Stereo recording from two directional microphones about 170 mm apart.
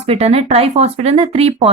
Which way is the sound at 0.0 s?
40° right (ahead or behind).